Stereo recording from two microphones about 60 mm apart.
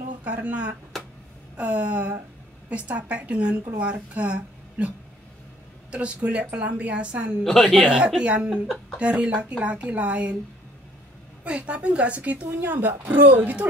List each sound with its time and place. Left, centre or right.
0.2 s speech: right
7.4 s speech: centre
7.8 s speech: centre
11.4 s speech: centre
12.4 s speech: right